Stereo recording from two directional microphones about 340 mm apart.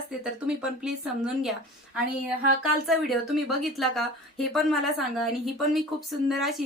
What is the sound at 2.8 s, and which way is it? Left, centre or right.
A woman's voice, centre.